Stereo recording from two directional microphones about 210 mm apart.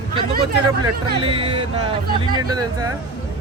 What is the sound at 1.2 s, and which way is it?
A man's voice, 25° right (ahead or behind).